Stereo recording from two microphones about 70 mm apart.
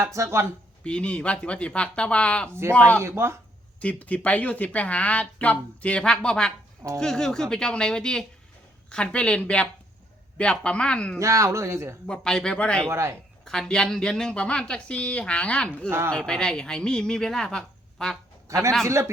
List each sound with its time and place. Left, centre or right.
0.0 s speech: right
0.9 s a woman's voice: centre
3.0 s speech: right
3.8 s a woman's voice: left
11.2 s speech: right
12.0 s a woman's voice: centre
12.9 s speech: right
13.4 s a woman's voice: centre
15.9 s speech: right
16.1 s a woman's voice: centre
18.4 s a man's voice: right